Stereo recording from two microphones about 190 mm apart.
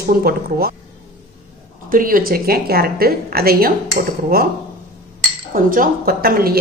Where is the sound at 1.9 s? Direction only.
50° right (ahead or behind).